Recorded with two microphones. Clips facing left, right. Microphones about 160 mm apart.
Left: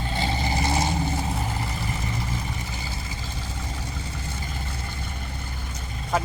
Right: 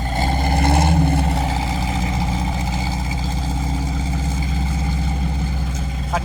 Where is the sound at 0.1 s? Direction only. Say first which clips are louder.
Right 7 dB; 45° right (ahead or behind); by 4.9 s 90° right.